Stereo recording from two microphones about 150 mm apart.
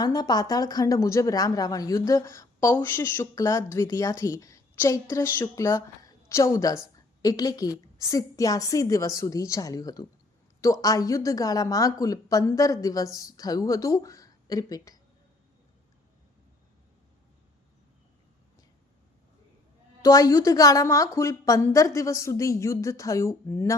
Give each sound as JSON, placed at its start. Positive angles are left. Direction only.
{"t": 0.0, "sound": "a woman's voice", "side_deg": 25}
{"t": 20.0, "sound": "speech", "side_deg": 25}